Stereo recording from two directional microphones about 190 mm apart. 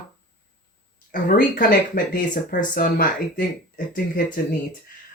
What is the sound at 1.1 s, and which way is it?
Speech, 45° left (ahead or behind).